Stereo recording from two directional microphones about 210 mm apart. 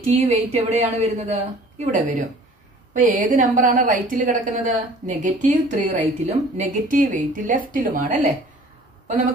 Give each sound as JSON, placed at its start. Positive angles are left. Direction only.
{"t": 0.0, "sound": "a woman's voice", "side_deg": -35}